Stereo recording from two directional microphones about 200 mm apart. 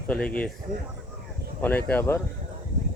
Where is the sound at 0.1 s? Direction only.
5° left (ahead or behind).